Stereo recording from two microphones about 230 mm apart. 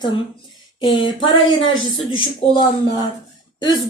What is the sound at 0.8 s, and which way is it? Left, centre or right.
A woman's voice, centre.